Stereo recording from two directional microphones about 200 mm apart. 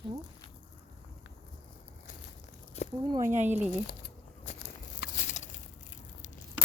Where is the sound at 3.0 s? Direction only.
20° right (ahead or behind).